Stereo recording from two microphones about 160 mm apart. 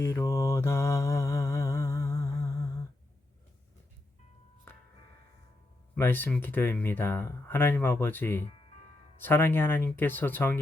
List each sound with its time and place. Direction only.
0.0 s mantra: 15° left (ahead or behind)
4.7 s music: 15° left (ahead or behind)
5.9 s speech: 10° left (ahead or behind)